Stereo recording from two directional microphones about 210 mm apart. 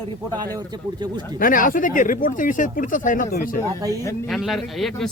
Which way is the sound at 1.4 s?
40° left (ahead or behind).